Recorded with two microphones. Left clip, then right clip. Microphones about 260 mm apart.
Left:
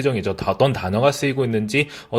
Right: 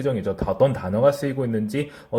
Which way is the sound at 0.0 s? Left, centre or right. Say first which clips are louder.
Left 3 dB; left.